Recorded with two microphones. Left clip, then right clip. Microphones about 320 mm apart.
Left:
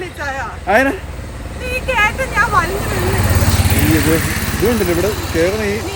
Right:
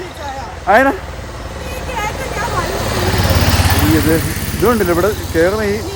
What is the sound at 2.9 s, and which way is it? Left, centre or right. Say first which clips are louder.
Vehicle: right 2 dB; right.